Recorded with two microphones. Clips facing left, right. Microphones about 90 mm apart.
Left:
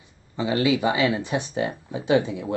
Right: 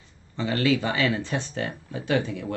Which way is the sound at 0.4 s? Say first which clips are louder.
Left 2 dB; 15° left (ahead or behind).